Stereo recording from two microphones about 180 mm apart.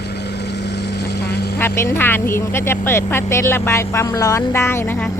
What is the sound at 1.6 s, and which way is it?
Speech, 15° left (ahead or behind).